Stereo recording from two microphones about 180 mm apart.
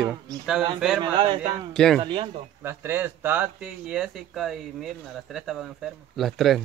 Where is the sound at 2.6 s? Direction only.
10° right (ahead or behind).